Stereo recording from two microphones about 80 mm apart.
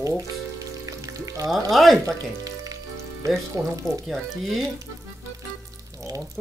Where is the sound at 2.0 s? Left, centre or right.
Right.